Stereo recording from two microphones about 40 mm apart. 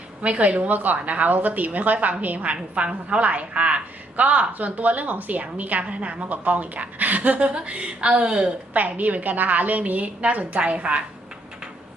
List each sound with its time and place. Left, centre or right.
0.2 s a woman's voice: right
7.3 s a woman's voice: right
8.7 s a woman's voice: right